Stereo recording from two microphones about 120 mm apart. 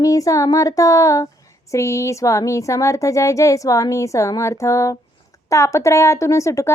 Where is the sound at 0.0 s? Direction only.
30° left (ahead or behind).